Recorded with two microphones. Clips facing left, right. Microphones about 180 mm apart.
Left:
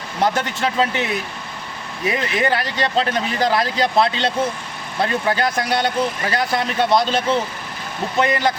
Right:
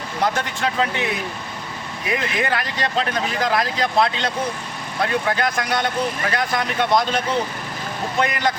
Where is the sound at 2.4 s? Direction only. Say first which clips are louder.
Left 3 dB; 30° left (ahead or behind).